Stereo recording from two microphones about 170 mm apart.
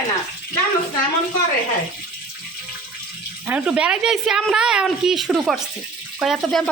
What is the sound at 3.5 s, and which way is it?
Speech, 5° right (ahead or behind).